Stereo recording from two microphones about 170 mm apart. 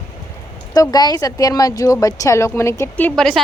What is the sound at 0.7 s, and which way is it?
A woman's voice, 25° left (ahead or behind).